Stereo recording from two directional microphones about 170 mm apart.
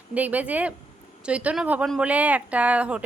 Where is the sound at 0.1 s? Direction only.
10° right (ahead or behind).